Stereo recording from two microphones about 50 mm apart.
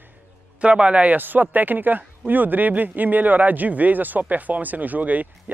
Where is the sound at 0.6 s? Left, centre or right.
Right.